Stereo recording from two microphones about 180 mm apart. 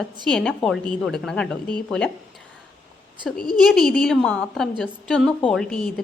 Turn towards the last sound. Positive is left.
turn(degrees=5)  # may be behind; listen again after turning